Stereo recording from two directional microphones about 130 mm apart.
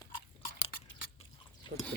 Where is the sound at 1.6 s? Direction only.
35° left (ahead or behind).